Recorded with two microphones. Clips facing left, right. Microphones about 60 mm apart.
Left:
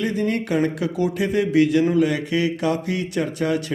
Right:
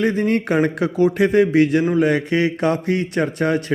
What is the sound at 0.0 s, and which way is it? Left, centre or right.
A man's voice, right.